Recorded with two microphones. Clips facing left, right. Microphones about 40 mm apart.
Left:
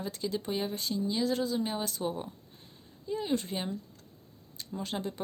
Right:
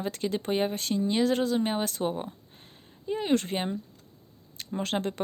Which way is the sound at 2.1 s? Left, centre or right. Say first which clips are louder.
Right 4 dB; right.